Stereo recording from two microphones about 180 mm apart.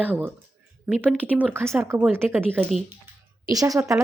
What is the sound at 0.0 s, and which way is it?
Speech, 10° right (ahead or behind).